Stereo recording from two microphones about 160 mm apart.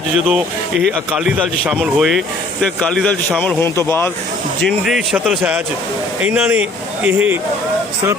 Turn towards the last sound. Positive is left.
turn(degrees=-10)  # may be behind; listen again after turning